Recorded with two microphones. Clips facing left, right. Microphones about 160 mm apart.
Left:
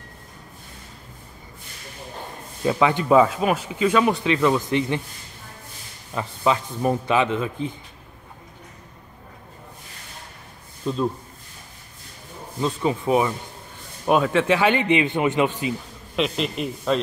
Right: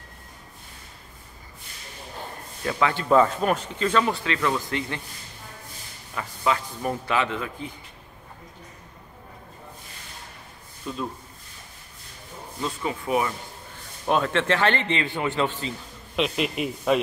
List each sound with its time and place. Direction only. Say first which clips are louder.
2.6 s speech: left 5 dB; 20° left (ahead or behind)
6.1 s a man's voice: left 4 dB; 25° left (ahead or behind)
10.9 s a man's voice: left 7 dB; 25° left (ahead or behind)
12.6 s a man's voice: left 6 dB; 25° left (ahead or behind)
14.0 s speech: left 4 dB; 10° left (ahead or behind)
16.2 s speech: left 1 dB; 5° right (ahead or behind)